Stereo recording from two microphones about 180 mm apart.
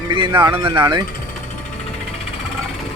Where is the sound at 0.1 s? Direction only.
25° right (ahead or behind).